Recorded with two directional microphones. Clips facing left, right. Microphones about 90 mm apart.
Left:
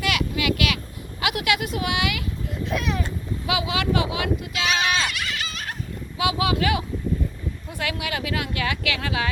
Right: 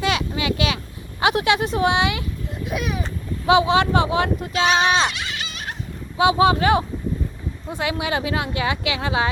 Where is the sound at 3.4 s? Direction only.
30° right (ahead or behind).